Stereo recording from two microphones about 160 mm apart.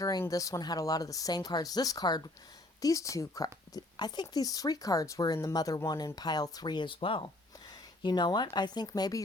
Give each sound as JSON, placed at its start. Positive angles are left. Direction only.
{"t": 0.0, "sound": "speech", "side_deg": 20}